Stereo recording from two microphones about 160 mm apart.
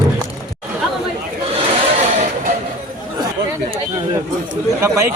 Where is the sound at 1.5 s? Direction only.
40° right (ahead or behind).